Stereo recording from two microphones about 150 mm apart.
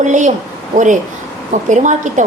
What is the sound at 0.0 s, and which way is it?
Speech, 55° right (ahead or behind).